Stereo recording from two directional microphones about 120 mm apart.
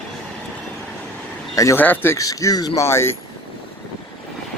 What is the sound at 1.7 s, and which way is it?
Speech, 15° left (ahead or behind).